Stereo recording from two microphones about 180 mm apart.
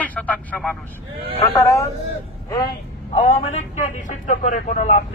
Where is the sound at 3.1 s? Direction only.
40° left (ahead or behind).